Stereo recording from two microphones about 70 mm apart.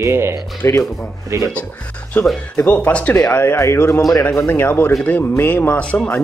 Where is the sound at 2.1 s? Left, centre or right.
Left.